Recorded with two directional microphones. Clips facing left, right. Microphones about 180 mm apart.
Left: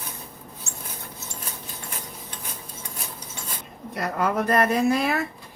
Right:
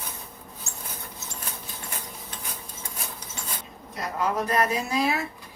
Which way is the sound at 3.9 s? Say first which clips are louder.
Left 3 dB; 60° left (ahead or behind).